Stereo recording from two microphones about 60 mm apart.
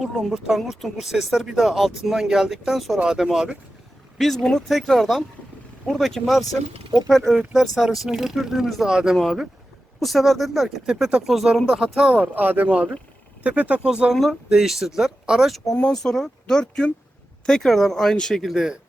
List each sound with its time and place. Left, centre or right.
0.0 s speech: centre
4.2 s speech: centre
10.8 s speech: centre
12.2 s speech: right; by 14.1 s centre
14.1 s speech: centre
15.7 s speech: centre
18.4 s speech: centre